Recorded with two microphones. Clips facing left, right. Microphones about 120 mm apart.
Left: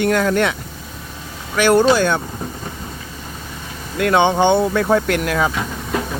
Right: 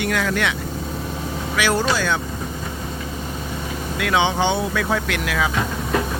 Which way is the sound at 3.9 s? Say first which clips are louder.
Left 5 dB; 50° left (ahead or behind).